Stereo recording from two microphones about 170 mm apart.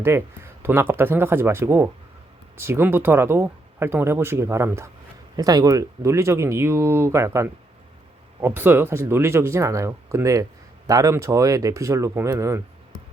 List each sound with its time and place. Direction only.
0.0 s speech: 15° right (ahead or behind)